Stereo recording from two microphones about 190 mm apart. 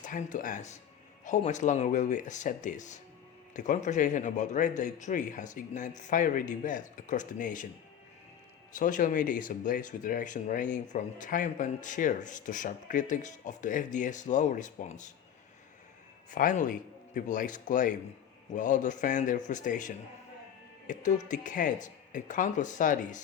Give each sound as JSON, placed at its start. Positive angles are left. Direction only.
{"t": 0.0, "sound": "speech", "side_deg": 40}
{"t": 8.7, "sound": "speech", "side_deg": 45}
{"t": 16.3, "sound": "speech", "side_deg": 45}